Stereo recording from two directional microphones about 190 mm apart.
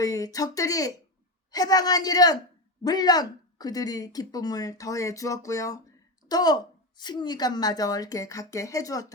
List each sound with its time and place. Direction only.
0.0 s speech: 20° left (ahead or behind)